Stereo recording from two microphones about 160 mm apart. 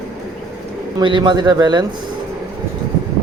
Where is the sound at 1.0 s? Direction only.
30° right (ahead or behind).